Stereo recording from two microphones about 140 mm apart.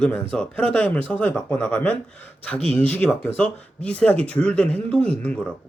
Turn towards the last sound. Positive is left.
turn(degrees=10)  # may be behind; listen again after turning